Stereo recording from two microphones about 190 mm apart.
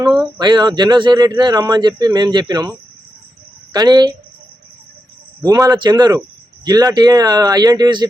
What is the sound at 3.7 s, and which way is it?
Speech, 20° right (ahead or behind).